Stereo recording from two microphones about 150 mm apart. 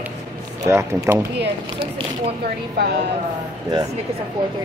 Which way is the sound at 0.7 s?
15° right (ahead or behind).